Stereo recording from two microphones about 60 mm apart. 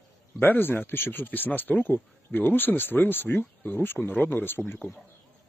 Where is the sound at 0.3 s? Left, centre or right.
Left.